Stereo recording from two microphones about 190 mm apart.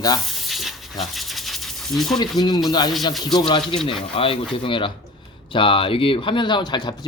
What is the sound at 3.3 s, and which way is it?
Speech, 25° left (ahead or behind).